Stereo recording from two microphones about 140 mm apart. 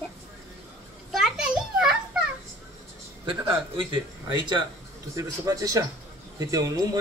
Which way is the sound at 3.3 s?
35° right (ahead or behind).